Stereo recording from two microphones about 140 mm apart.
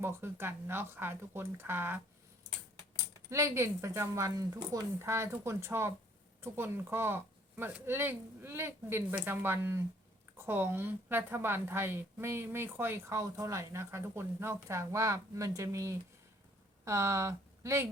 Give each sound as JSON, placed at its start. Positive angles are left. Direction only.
{"t": 0.0, "sound": "a woman's voice", "side_deg": -15}
{"t": 3.2, "sound": "a woman's voice", "side_deg": -20}